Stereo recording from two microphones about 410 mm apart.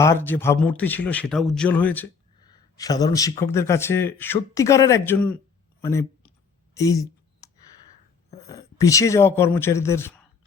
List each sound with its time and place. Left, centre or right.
0.0 s a man's voice: centre
5.8 s a sound: centre
6.7 s speech: centre
8.4 s speech: centre